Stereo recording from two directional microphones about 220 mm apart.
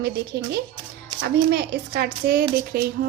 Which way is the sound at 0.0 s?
50° right (ahead or behind).